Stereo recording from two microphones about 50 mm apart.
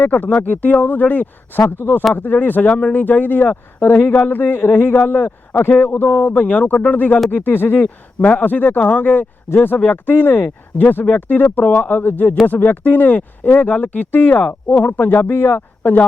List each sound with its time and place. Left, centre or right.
0.0 s a man's voice: left
8.2 s a man's voice: left
14.4 s speech: left
14.8 s a man's voice: left
15.3 s a man's voice: left
15.8 s speech: left